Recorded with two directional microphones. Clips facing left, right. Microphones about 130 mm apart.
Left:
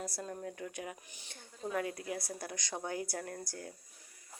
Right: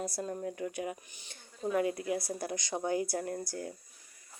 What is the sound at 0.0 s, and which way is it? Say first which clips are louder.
Speech: right 5 dB; 20° right (ahead or behind).